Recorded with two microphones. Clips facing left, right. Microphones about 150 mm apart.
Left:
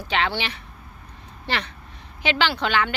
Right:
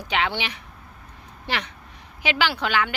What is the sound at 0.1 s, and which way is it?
Speech, 15° right (ahead or behind).